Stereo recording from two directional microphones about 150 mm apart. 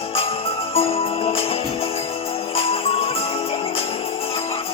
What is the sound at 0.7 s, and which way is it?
Music, 40° left (ahead or behind).